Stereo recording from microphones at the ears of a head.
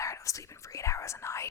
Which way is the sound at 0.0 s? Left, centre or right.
Left.